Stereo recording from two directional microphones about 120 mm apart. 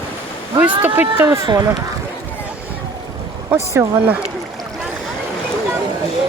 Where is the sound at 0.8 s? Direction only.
15° right (ahead or behind).